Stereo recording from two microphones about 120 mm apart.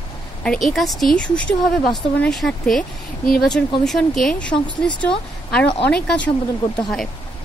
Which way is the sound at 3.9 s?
5° left (ahead or behind).